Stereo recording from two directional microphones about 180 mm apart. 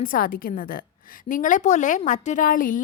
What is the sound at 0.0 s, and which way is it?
A woman's voice, 50° left (ahead or behind).